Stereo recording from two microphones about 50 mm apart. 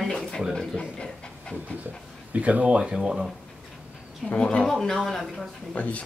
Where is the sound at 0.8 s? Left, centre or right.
Centre.